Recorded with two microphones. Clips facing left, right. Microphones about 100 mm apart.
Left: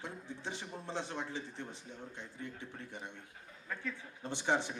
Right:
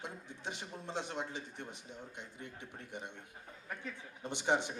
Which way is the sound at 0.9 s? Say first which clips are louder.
Even; 15° right (ahead or behind).